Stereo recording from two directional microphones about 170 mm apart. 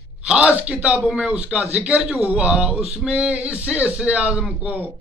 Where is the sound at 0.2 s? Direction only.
5° right (ahead or behind).